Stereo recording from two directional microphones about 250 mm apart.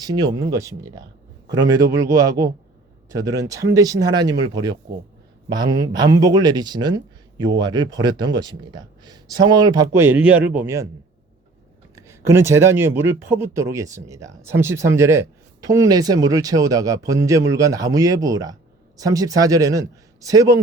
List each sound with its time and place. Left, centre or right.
0.0 s speech: centre
11.9 s speech: centre